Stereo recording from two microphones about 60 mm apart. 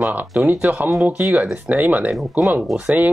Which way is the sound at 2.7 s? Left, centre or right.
Right.